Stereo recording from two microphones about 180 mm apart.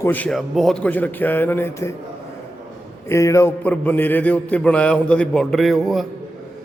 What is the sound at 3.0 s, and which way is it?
A man's voice, 15° left (ahead or behind).